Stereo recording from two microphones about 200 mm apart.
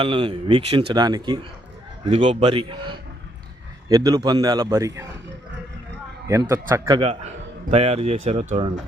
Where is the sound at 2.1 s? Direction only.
35° right (ahead or behind); by 5.1 s 15° right (ahead or behind).